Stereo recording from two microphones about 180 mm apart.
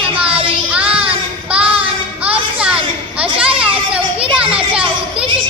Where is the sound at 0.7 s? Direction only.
5° right (ahead or behind).